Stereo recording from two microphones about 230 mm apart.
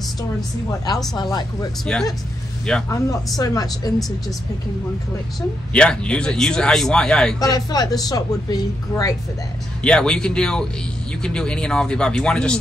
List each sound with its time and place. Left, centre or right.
1.1 s speech: centre
1.9 s speech: centre
3.3 s a woman's voice: centre
5.7 s speech: centre
7.3 s a woman's voice: centre
9.8 s speech: centre